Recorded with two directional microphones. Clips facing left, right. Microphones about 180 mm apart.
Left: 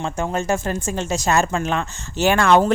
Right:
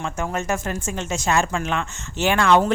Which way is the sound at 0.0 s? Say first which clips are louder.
Left 3 dB; 30° left (ahead or behind).